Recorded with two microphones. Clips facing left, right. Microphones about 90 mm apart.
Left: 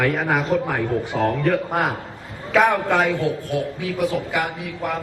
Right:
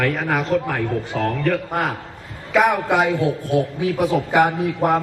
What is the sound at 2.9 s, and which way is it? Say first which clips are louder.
A man's voice: right 1 dB; 15° right (ahead or behind).